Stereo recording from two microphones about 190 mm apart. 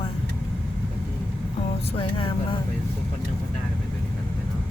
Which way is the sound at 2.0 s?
25° left (ahead or behind).